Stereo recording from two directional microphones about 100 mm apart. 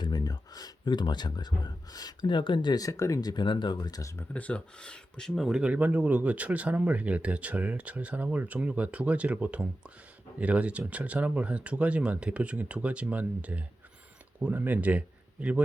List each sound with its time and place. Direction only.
0.0 s speech: 45° left (ahead or behind)
4.0 s speech: 30° left (ahead or behind)
4.4 s speech: 15° left (ahead or behind)
5.3 s speech: 5° right (ahead or behind)